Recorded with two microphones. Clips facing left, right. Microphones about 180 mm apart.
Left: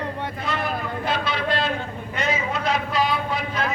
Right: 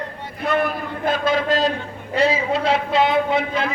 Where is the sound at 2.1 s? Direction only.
30° right (ahead or behind).